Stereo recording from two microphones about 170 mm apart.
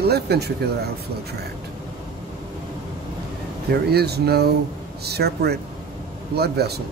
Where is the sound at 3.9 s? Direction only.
70° right (ahead or behind).